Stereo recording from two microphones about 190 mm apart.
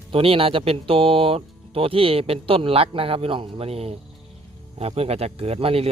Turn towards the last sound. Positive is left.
turn(degrees=-30)  # may be behind; listen again after turning